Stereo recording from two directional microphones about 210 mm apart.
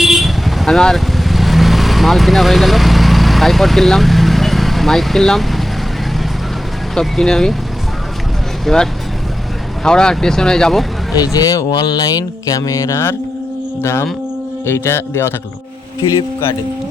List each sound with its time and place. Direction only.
0.0 s vehicle: centre (ahead or behind)
6.9 s speech: centre (ahead or behind)
8.6 s speech: 5° left (ahead or behind)
11.1 s speech: 15° left (ahead or behind)